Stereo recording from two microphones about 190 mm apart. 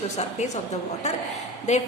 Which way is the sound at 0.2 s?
35° left (ahead or behind).